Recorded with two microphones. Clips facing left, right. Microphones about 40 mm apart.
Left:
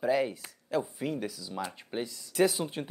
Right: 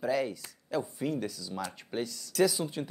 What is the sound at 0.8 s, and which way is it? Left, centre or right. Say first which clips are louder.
Speech: right 1 dB; centre.